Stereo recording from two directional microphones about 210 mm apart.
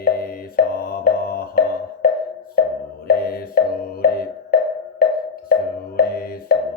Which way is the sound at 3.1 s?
45° left (ahead or behind).